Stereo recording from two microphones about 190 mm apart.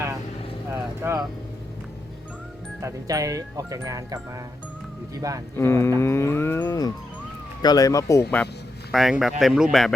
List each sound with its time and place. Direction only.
0.7 s vehicle: 15° right (ahead or behind)
2.8 s speech: 15° right (ahead or behind)
5.5 s livestock: 15° left (ahead or behind)
8.9 s a man's voice: centre (ahead or behind)